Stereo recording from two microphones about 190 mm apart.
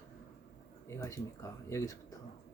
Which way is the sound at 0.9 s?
15° left (ahead or behind).